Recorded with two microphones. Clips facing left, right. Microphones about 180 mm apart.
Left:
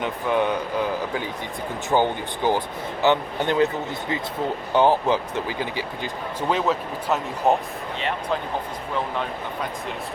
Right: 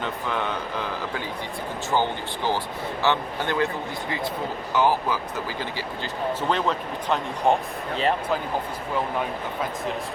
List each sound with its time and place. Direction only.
0.0 s speech: 15° left (ahead or behind)
1.9 s speech: 15° left (ahead or behind)
4.7 s speech: 25° left (ahead or behind)
6.5 s speech: 5° left (ahead or behind)